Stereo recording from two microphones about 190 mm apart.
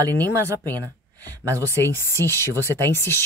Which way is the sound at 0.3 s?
15° right (ahead or behind).